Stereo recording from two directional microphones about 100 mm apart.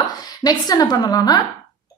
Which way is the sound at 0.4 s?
40° left (ahead or behind).